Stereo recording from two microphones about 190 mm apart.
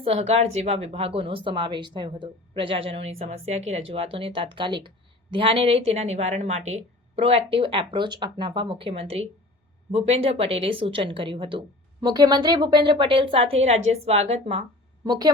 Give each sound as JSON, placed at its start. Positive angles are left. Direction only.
{"t": 0.0, "sound": "a woman's voice", "side_deg": -30}
{"t": 15.0, "sound": "a woman's voice", "side_deg": -20}